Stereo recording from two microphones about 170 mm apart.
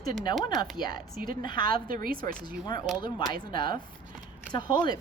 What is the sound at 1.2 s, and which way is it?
Speech, 60° right (ahead or behind).